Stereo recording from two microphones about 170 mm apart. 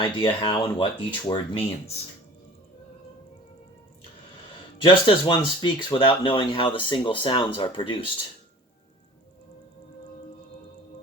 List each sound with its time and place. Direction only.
0.0 s speech: 30° left (ahead or behind)
4.8 s speech: 30° left (ahead or behind)